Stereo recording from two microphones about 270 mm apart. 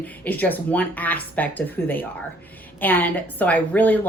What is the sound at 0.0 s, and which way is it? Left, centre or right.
A woman's voice, centre.